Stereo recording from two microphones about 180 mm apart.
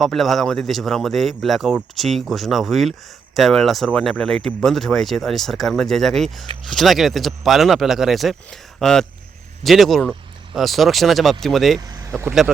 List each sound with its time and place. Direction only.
0.0 s speech: centre (ahead or behind)
11.8 s speech: 20° right (ahead or behind)